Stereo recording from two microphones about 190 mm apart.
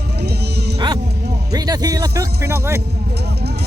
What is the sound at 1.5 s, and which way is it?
Speech, 20° right (ahead or behind).